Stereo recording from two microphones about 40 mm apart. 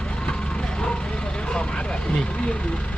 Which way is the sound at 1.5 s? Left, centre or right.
Left.